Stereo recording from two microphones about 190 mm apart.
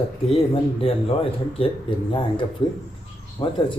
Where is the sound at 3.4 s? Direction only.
20° left (ahead or behind).